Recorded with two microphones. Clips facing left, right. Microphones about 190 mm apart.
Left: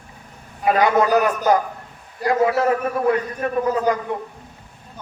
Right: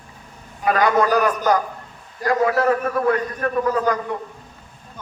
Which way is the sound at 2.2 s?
20° left (ahead or behind).